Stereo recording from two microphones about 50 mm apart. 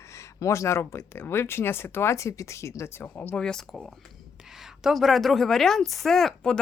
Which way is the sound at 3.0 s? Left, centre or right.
Left.